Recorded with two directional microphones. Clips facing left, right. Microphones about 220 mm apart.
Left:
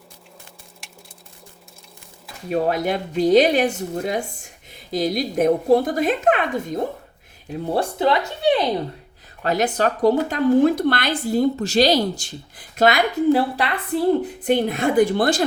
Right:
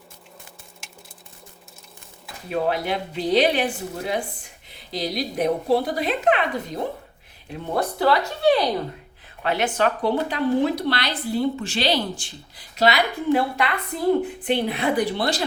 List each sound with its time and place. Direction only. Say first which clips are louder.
0.8 s a sound: even; centre (ahead or behind)
2.5 s a woman's voice: left 3 dB; 45° left (ahead or behind)
7.5 s speech: left 3 dB; 35° left (ahead or behind)
7.9 s speech: left 1 dB; 20° left (ahead or behind)
9.4 s a woman's voice: left 2 dB; 40° left (ahead or behind)